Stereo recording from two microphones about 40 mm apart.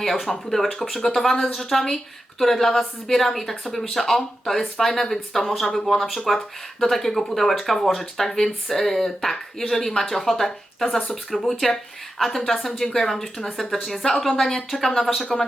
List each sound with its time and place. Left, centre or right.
0.0 s speech: centre